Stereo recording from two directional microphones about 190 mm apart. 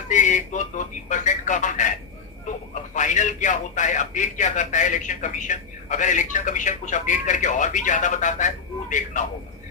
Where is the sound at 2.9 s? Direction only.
40° left (ahead or behind).